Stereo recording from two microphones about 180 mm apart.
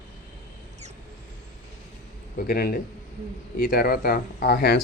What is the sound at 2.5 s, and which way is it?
Speech, 55° left (ahead or behind).